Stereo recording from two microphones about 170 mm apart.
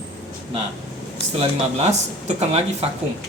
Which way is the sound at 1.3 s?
40° right (ahead or behind).